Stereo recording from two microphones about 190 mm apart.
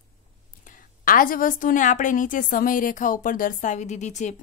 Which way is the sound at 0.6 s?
45° left (ahead or behind).